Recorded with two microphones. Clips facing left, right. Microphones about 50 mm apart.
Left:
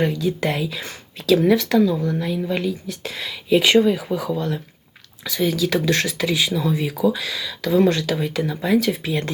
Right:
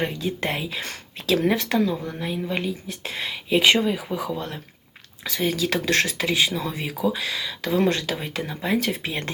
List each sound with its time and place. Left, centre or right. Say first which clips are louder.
0.0 s speech: left 5 dB; right
3.8 s speech: left 5 dB; centre
5.2 s speech: left 3 dB; right